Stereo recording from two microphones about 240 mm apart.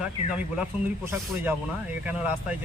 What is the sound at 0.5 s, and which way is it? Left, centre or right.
A man's voice, centre.